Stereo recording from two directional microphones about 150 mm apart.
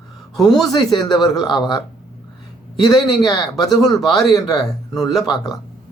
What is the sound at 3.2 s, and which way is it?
Speech, 25° left (ahead or behind).